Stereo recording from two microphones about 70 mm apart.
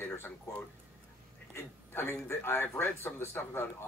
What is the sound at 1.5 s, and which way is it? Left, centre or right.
Speech, left.